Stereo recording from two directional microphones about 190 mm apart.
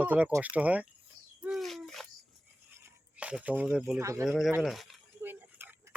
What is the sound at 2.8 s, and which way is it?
Speech, 5° right (ahead or behind).